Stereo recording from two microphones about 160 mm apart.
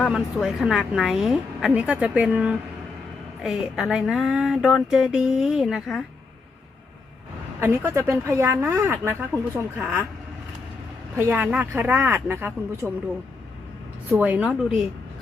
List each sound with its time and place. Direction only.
0.0 s a woman's voice: centre (ahead or behind)
7.6 s a woman's voice: 15° right (ahead or behind)
11.3 s a woman's voice: 10° right (ahead or behind)
14.1 s a woman's voice: 10° right (ahead or behind)